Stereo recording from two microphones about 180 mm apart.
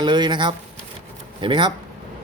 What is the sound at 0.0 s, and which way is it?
A man's voice, 25° right (ahead or behind).